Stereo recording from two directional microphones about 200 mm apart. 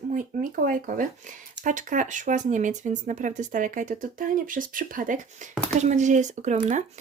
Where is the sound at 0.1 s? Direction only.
40° right (ahead or behind).